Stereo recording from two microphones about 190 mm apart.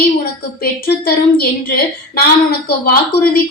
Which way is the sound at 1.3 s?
55° left (ahead or behind).